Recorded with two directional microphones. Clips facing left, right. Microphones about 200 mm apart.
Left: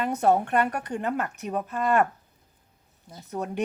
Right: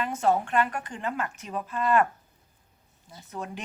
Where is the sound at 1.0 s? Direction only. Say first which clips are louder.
Left 4 dB; 50° left (ahead or behind).